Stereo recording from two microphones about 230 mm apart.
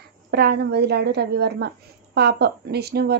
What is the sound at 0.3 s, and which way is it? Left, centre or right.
Speech, right.